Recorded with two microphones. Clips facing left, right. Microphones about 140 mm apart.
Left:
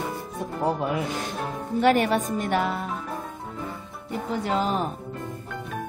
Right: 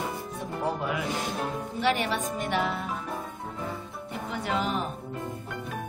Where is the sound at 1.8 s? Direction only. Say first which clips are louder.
Left 7 dB; 45° left (ahead or behind).